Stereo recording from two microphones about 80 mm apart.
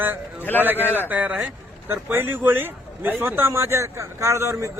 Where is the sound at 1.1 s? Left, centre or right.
Centre.